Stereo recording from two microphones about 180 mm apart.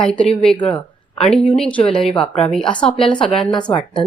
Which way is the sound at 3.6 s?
25° left (ahead or behind).